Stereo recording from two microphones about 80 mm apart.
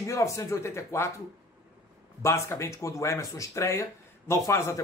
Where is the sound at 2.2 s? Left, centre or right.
Left.